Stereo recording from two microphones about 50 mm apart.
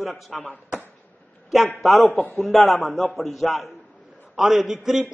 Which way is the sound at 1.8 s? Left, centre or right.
Centre.